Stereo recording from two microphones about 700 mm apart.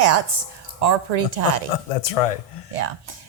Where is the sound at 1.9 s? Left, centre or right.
Left.